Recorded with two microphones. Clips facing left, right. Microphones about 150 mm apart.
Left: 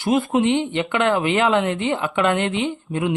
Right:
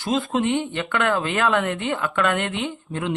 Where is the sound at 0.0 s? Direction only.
15° left (ahead or behind).